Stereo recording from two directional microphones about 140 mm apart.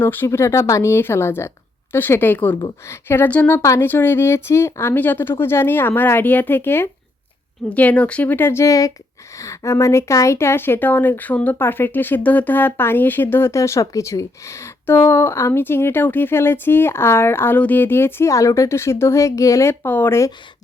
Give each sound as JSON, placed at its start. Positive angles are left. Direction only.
{"t": 0.0, "sound": "speech", "side_deg": 15}
{"t": 2.6, "sound": "speech", "side_deg": 25}
{"t": 3.1, "sound": "speech", "side_deg": 15}